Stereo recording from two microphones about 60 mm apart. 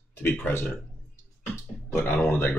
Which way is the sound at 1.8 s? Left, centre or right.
Left.